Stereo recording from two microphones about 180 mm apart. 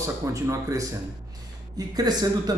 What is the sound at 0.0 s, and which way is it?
Speech, 15° right (ahead or behind).